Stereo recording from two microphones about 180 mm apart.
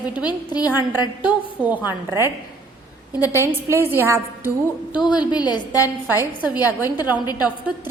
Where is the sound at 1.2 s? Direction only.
5° right (ahead or behind).